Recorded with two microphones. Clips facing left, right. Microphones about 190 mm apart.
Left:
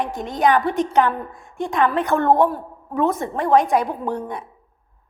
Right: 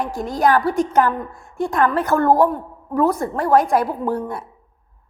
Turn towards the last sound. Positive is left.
turn(degrees=15)  # may be behind; listen again after turning